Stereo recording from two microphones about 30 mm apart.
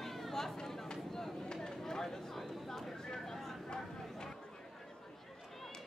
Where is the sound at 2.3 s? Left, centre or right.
Centre.